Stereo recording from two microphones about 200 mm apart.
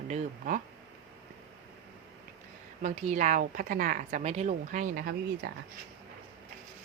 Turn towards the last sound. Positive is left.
turn(degrees=-50)  # may be behind; listen again after turning